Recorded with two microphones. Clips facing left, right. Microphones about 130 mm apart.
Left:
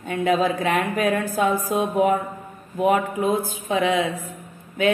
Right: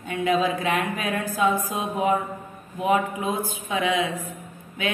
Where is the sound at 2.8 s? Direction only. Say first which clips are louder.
Left 3 dB; 45° left (ahead or behind).